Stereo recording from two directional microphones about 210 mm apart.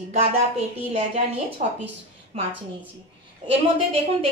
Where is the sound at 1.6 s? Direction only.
35° right (ahead or behind).